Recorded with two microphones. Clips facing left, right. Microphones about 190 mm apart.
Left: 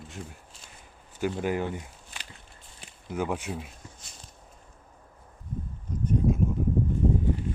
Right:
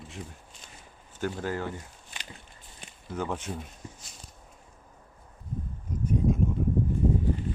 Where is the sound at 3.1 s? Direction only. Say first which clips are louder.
Left 2 dB; 10° left (ahead or behind).